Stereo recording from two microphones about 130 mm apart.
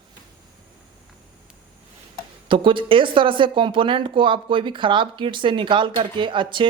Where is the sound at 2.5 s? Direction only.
40° right (ahead or behind).